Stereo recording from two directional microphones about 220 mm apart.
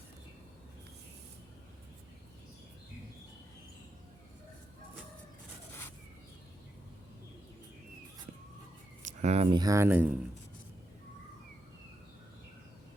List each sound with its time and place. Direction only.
9.0 s speech: 30° right (ahead or behind); by 10.2 s 10° right (ahead or behind)